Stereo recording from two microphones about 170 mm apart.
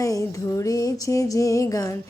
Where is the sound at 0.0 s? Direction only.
20° left (ahead or behind).